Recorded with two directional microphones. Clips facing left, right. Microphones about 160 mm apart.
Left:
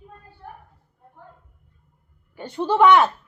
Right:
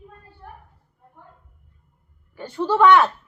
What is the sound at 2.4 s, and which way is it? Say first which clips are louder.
Speech: even; 20° left (ahead or behind).